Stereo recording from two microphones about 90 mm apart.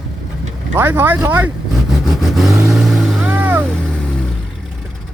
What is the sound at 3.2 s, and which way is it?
Vehicle, 20° right (ahead or behind).